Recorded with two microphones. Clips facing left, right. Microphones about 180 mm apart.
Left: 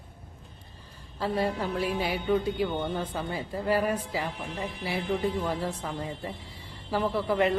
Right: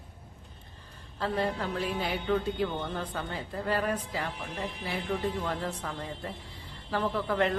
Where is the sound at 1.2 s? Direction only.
10° left (ahead or behind).